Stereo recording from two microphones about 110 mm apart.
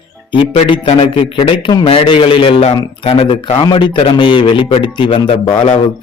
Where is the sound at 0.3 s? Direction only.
50° left (ahead or behind).